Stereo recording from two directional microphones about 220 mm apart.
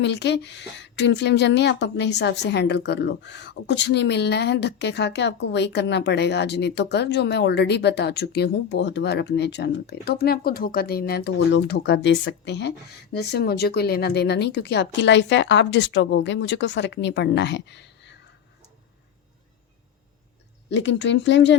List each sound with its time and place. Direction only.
0.0 s a woman's voice: 50° left (ahead or behind)
20.7 s speech: 55° left (ahead or behind)